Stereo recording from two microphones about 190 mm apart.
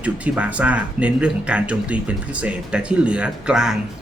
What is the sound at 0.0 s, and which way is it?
Speech, 5° right (ahead or behind).